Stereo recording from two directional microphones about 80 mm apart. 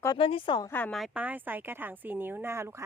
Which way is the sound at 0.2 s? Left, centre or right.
Left.